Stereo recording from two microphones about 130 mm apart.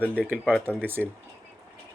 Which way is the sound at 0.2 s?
15° right (ahead or behind).